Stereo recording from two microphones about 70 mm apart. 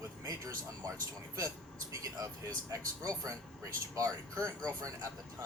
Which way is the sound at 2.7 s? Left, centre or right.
Right.